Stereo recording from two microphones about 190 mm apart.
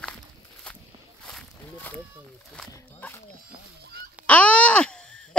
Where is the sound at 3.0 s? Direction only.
10° left (ahead or behind).